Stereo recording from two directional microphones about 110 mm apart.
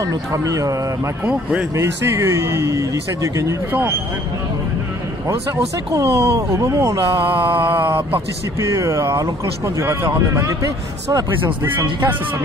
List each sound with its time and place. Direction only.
0.0 s speech: 30° right (ahead or behind)
1.2 s speech: 10° right (ahead or behind)
1.8 s speech: 25° right (ahead or behind)
5.9 s speech: 25° right (ahead or behind)
8.5 s speech: 30° right (ahead or behind)
11.6 s speech: 20° right (ahead or behind)